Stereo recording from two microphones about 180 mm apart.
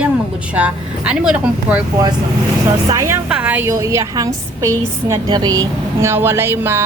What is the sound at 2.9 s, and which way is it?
A woman's voice, 15° right (ahead or behind).